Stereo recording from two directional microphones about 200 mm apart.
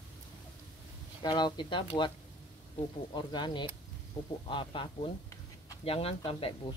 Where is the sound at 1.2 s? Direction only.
20° left (ahead or behind).